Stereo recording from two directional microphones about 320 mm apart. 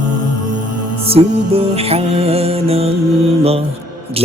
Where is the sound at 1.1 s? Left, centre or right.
Centre.